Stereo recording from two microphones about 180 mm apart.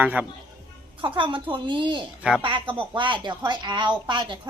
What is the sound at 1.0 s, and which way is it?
A woman's voice, 30° right (ahead or behind).